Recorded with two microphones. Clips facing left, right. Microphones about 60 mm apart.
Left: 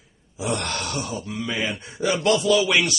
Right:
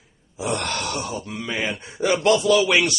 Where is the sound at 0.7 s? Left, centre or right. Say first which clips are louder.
Right 1 dB; right.